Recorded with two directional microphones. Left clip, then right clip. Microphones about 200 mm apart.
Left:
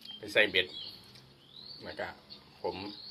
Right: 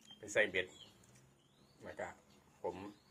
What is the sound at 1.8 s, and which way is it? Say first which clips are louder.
Speech: left 6 dB; centre (ahead or behind).